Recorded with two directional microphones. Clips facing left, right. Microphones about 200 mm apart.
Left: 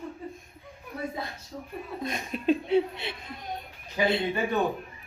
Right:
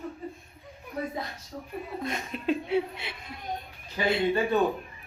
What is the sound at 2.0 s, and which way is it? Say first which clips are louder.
Speech: left 3 dB; 20° left (ahead or behind).